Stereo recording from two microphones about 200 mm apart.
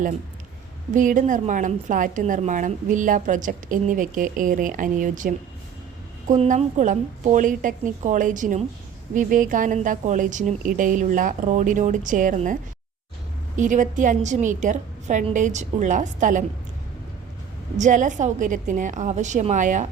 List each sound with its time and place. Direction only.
0.9 s a woman's voice: 40° right (ahead or behind)
13.6 s a woman's voice: 40° right (ahead or behind)
17.7 s a woman's voice: 40° right (ahead or behind)